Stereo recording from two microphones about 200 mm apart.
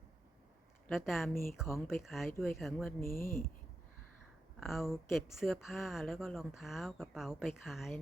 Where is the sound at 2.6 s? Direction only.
Centre (ahead or behind).